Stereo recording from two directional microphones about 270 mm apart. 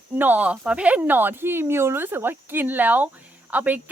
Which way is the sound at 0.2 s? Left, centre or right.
Centre.